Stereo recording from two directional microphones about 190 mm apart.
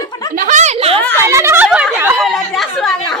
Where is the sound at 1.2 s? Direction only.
15° right (ahead or behind); by 3.2 s centre (ahead or behind).